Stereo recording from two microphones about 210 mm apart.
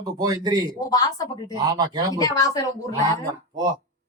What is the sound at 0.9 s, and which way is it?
Speech, 20° left (ahead or behind).